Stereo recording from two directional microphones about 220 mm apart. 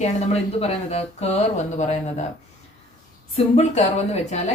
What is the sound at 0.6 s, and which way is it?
Speech, 30° left (ahead or behind).